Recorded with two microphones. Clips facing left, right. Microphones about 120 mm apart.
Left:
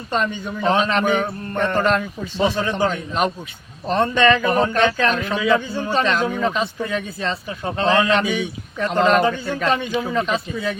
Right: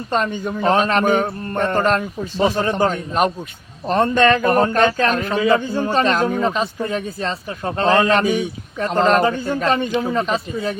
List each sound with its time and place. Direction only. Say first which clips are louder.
0.1 s a man's voice: right 2 dB; 40° right (ahead or behind)